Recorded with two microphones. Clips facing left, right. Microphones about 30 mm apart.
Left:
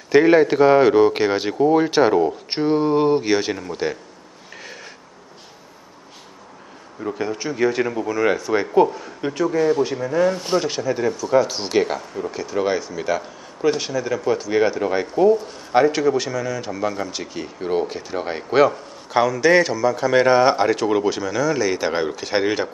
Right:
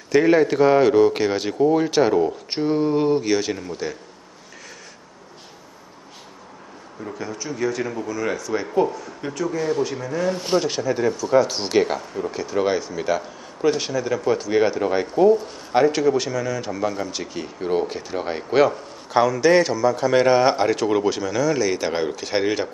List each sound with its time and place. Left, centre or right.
0.1 s speech: centre
7.2 s a man's voice: left; by 22.7 s centre